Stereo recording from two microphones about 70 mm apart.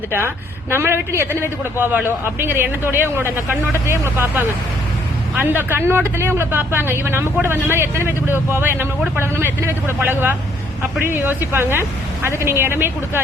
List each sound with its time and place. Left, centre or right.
0.7 s a man's voice: right